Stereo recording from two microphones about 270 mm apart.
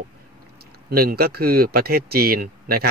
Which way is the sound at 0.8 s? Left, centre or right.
Right.